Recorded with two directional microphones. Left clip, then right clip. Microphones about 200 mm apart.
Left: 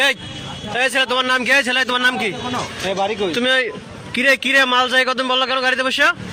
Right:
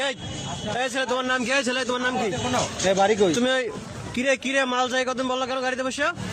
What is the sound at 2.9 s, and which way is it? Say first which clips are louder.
Speech: right 1 dB; 60° right (ahead or behind).